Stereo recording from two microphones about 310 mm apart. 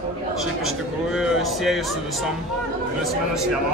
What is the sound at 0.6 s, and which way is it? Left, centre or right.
Speech, centre.